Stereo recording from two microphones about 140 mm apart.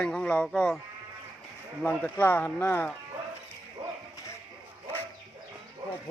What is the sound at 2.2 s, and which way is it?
Speech, 15° left (ahead or behind).